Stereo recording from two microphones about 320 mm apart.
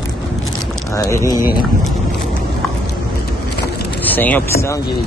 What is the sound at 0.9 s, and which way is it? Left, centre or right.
Speech, centre.